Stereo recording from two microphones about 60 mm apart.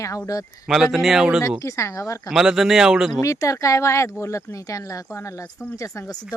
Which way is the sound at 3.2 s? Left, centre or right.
Left.